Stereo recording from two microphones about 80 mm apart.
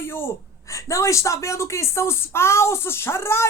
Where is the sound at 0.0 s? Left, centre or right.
Left.